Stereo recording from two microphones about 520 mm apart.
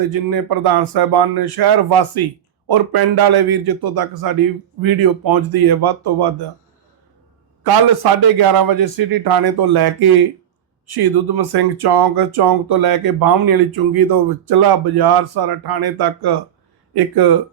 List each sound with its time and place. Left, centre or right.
0.1 s speech: right
7.6 s speech: right